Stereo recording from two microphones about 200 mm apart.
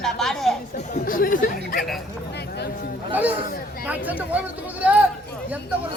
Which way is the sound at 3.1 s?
10° right (ahead or behind).